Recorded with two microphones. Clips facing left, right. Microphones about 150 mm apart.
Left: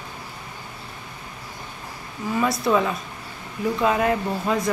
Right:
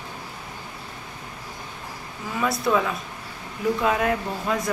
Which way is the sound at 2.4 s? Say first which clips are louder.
Left 1 dB; centre (ahead or behind).